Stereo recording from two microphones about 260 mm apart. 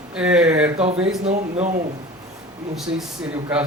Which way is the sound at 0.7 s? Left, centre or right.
Right.